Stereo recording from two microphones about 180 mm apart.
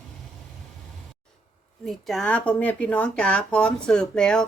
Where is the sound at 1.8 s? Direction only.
Centre (ahead or behind).